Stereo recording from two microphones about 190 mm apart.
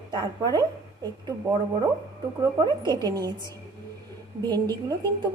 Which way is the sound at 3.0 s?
20° right (ahead or behind).